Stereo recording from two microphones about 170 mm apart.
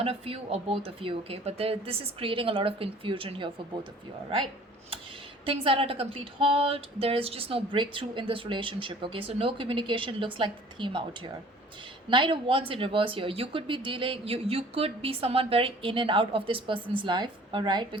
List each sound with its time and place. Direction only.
0.0 s speech: 35° right (ahead or behind)
5.5 s speech: 30° right (ahead or behind)